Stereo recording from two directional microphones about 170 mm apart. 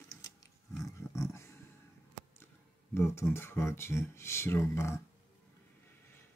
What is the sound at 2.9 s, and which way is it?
Speech, 15° left (ahead or behind).